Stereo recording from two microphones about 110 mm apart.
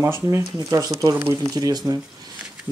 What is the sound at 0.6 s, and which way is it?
Speech, 35° right (ahead or behind).